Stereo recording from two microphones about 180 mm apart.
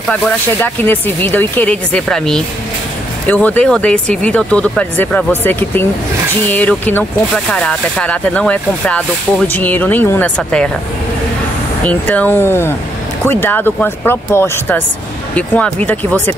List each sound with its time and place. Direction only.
0.1 s speech: 10° left (ahead or behind)
11.8 s speech: 10° left (ahead or behind)